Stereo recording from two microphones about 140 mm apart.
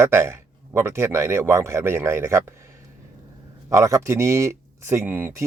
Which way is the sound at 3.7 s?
25° right (ahead or behind).